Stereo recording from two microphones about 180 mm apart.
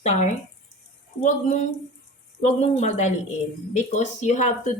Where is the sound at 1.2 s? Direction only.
45° left (ahead or behind).